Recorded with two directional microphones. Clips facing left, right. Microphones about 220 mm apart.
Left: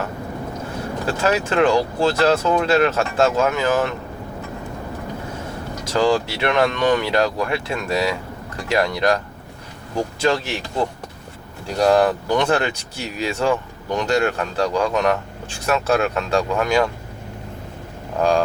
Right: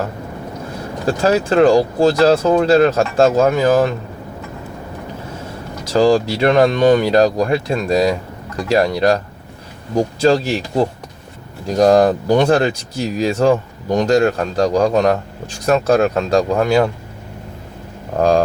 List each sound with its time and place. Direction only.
1.0 s speech: 35° right (ahead or behind)
5.9 s speech: 35° right (ahead or behind)
18.2 s speech: 40° right (ahead or behind)